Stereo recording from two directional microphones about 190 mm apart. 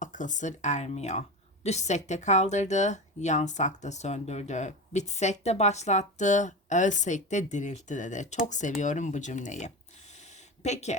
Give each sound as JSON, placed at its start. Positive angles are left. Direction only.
{"t": 0.0, "sound": "speech", "side_deg": 40}